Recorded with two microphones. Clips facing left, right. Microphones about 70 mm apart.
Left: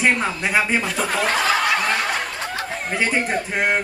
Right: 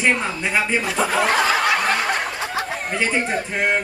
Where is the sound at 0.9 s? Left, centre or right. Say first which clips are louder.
Right 2 dB; centre.